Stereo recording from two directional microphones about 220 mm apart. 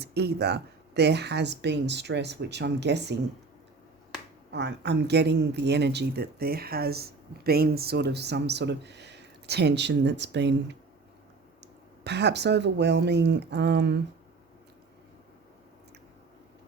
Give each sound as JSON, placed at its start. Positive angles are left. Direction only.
{"t": 0.0, "sound": "a woman's voice", "side_deg": -50}
{"t": 4.5, "sound": "a woman's voice", "side_deg": -50}
{"t": 12.0, "sound": "a woman's voice", "side_deg": -50}